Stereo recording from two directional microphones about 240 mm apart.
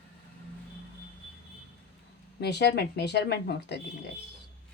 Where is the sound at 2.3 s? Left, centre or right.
Left.